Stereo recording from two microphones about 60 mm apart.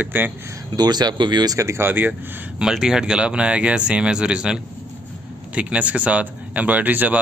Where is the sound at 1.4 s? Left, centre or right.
Right.